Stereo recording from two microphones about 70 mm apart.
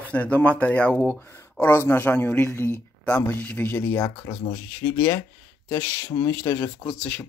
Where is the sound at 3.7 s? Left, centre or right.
Left.